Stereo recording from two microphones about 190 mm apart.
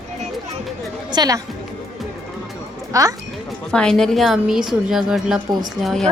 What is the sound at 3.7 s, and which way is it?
A woman's voice, 5° left (ahead or behind).